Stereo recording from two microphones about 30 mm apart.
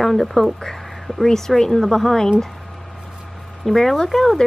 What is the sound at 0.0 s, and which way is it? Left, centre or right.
Speech, centre.